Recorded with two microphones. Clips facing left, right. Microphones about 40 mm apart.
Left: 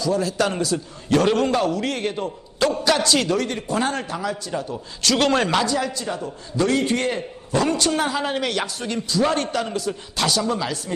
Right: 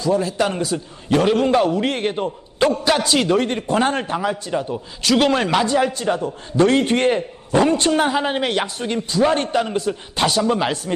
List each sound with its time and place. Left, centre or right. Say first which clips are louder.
0.0 s a man's voice: right 2 dB; right
1.2 s speech: right 2 dB; centre
1.5 s a man's voice: right 4 dB; right
3.3 s a man's voice: right 4 dB; right
5.0 s speech: right 2 dB; centre
5.6 s a man's voice: right 5 dB; right